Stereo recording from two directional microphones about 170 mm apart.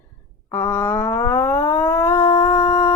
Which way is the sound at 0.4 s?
15° left (ahead or behind).